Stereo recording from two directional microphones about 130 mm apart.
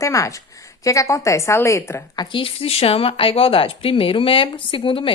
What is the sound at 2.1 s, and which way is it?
Speech, 40° left (ahead or behind).